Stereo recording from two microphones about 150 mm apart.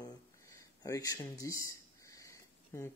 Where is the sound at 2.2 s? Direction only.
20° left (ahead or behind).